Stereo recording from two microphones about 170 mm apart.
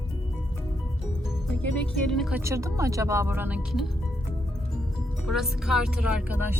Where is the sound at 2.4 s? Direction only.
15° right (ahead or behind).